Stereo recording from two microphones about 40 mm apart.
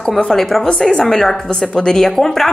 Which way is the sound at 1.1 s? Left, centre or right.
Centre.